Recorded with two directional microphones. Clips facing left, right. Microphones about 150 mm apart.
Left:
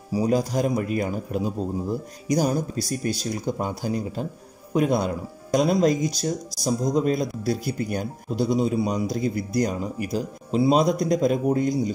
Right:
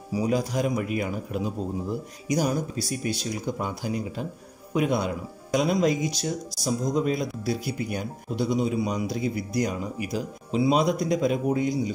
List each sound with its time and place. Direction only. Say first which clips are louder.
0.1 s speech: left 3 dB; 35° left (ahead or behind)